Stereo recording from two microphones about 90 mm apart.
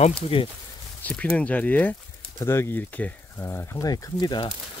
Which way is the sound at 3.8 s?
45° left (ahead or behind).